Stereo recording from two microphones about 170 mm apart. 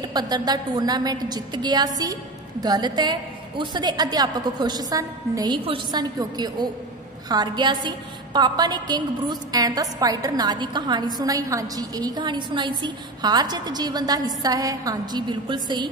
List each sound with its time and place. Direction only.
0.1 s a woman's voice: 25° right (ahead or behind)